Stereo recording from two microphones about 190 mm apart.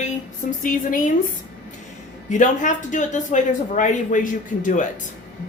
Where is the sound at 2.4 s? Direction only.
40° left (ahead or behind).